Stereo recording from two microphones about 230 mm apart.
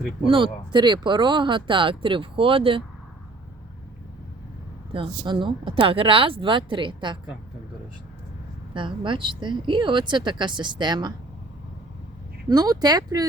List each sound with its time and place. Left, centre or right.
0.3 s speech: right
4.9 s speech: right
8.7 s speech: right
12.5 s speech: centre